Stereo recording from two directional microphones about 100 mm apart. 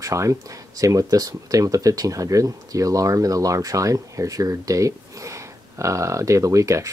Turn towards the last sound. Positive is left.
turn(degrees=-30)  # may be behind; listen again after turning